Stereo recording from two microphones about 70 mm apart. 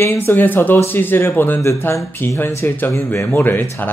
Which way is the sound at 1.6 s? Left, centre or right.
Left.